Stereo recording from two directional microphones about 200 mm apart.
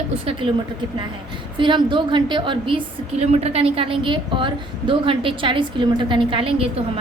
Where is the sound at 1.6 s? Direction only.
25° right (ahead or behind).